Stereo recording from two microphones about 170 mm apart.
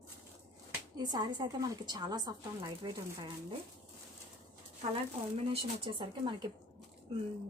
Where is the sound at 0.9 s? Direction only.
20° right (ahead or behind).